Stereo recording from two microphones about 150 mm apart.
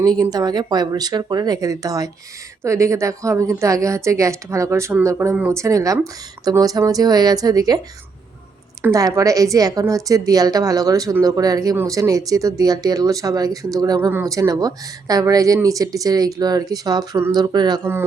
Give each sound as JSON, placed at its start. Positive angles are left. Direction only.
{"t": 0.0, "sound": "speech", "side_deg": -25}
{"t": 8.8, "sound": "speech", "side_deg": -25}